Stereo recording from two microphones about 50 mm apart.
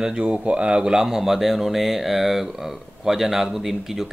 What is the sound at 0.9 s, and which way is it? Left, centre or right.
Speech, centre.